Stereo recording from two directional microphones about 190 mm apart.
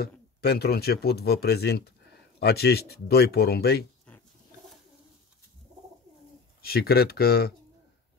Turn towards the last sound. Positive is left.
turn(degrees=55)  # may be behind; listen again after turning